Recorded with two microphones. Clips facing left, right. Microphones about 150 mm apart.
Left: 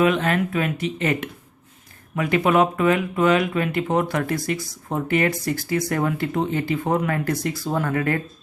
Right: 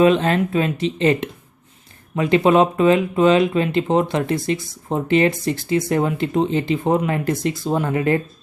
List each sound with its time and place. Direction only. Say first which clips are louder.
0.0 s speech: right 4 dB; 30° right (ahead or behind)